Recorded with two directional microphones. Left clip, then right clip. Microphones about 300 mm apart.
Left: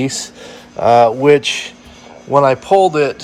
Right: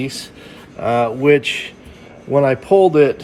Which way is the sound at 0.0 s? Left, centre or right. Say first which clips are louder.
Left 5 dB; left.